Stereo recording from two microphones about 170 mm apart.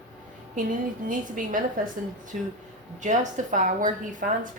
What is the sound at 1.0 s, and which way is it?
A woman's voice, 50° right (ahead or behind).